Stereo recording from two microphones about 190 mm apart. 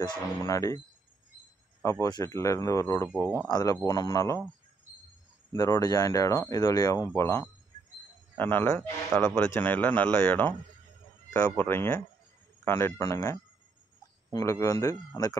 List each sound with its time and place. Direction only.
0.0 s speech: 20° left (ahead or behind)
1.8 s speech: 15° left (ahead or behind)
3.2 s speech: 15° right (ahead or behind)
3.4 s speech: 20° left (ahead or behind)
5.5 s speech: 20° left (ahead or behind)